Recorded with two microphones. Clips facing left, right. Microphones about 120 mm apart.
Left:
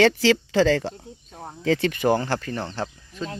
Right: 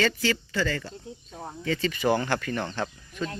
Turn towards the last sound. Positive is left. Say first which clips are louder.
# even
turn(degrees=25)  # may be behind; listen again after turning